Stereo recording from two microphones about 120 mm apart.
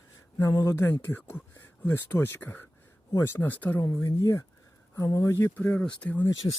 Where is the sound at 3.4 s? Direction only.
15° left (ahead or behind).